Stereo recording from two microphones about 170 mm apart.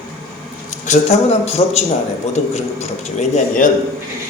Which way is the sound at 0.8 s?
40° left (ahead or behind).